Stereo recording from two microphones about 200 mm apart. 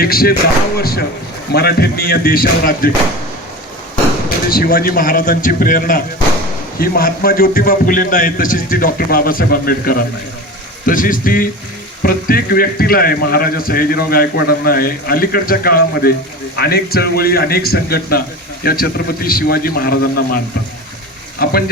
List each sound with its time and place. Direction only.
0.0 s a man's voice: 50° left (ahead or behind)
4.4 s a man's voice: 45° left (ahead or behind)
21.4 s a man's voice: 45° left (ahead or behind)